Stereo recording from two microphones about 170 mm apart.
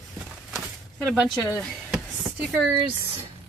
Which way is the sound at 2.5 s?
10° right (ahead or behind).